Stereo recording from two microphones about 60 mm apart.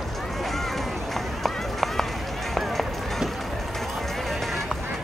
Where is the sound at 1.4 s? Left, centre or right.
Centre.